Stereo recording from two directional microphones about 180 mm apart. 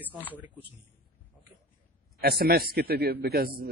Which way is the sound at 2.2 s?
60° right (ahead or behind).